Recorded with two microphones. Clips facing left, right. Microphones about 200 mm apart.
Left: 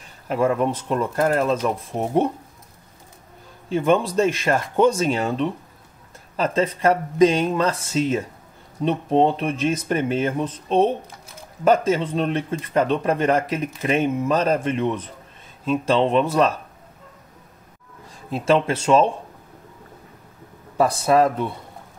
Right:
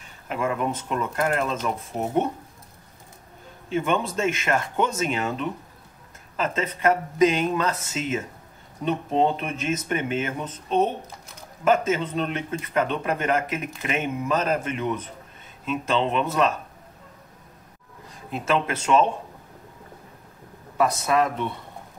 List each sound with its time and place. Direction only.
0.3 s speech: 35° left (ahead or behind)
3.6 s speech: 35° left (ahead or behind)
18.3 s speech: 30° left (ahead or behind)
20.7 s speech: 30° left (ahead or behind)